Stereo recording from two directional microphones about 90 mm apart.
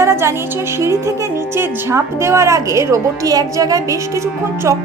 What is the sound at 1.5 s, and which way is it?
A woman's voice, 30° right (ahead or behind).